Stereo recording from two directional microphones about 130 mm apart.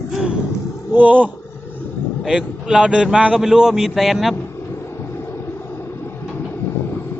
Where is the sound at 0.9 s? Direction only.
10° right (ahead or behind).